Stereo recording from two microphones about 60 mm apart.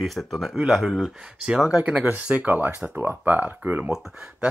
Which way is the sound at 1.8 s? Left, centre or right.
Right.